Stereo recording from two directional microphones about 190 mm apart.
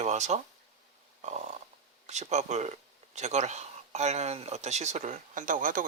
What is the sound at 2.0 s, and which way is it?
Speech, 35° right (ahead or behind).